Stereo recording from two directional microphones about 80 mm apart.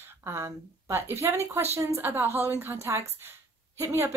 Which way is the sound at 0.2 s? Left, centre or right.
Right.